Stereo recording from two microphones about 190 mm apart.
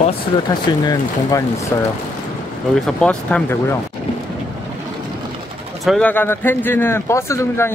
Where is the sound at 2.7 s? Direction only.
5° left (ahead or behind).